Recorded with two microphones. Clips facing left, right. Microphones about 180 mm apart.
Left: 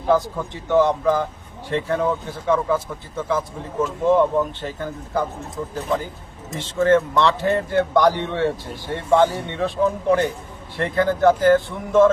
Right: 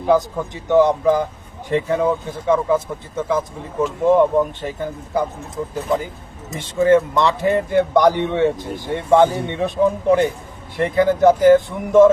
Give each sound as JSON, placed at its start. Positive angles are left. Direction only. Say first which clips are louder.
{"t": 0.1, "sound": "speech", "louder": "right 2 dB", "side_deg": -15}